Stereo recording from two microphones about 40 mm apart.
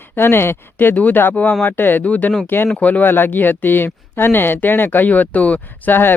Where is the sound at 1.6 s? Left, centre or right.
Left.